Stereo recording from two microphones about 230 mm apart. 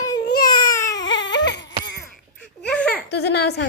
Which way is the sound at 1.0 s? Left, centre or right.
Left.